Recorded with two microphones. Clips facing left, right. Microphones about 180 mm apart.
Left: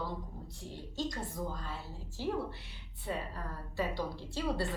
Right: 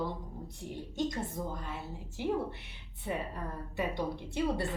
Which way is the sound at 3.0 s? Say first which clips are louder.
Right 2 dB; 20° right (ahead or behind).